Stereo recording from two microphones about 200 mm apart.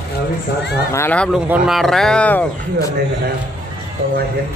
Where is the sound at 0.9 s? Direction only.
10° left (ahead or behind).